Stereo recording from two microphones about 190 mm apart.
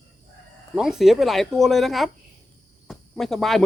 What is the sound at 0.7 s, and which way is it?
Speech, centre (ahead or behind).